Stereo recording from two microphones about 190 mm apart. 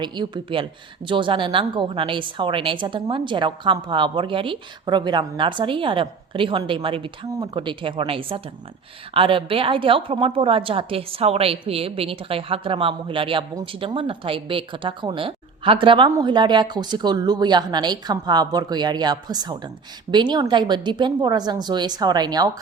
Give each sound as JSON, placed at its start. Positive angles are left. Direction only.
{"t": 0.0, "sound": "a woman's voice", "side_deg": -25}